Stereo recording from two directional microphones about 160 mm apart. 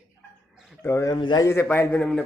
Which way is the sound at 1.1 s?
30° left (ahead or behind).